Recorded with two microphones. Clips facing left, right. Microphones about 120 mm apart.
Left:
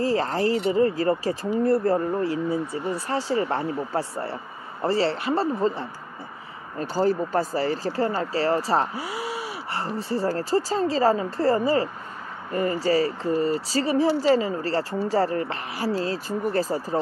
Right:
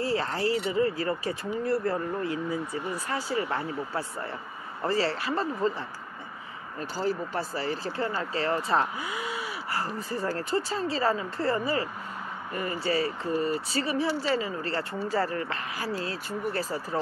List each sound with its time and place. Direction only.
0.0 s speech: 40° left (ahead or behind)